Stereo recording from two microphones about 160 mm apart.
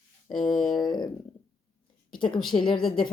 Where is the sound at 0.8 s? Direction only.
25° left (ahead or behind).